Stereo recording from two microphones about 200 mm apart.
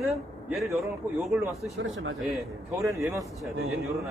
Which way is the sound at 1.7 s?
70° right (ahead or behind).